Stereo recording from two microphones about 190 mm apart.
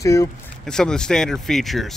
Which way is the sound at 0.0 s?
15° left (ahead or behind).